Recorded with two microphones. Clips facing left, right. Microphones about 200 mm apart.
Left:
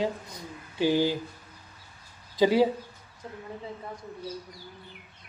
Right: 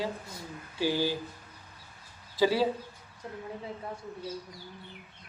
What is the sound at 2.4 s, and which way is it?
Speech, 20° left (ahead or behind).